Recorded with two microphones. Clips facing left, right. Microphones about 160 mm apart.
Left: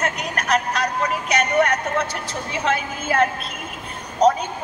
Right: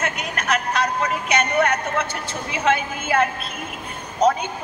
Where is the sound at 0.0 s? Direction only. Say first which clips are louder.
Left 1 dB; 35° left (ahead or behind).